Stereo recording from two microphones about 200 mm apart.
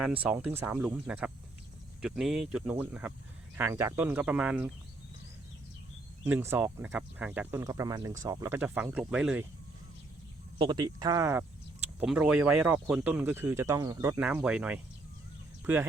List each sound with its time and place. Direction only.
0.2 s speech: 5° right (ahead or behind)
6.2 s speech: 10° right (ahead or behind)
10.6 s speech: 20° right (ahead or behind)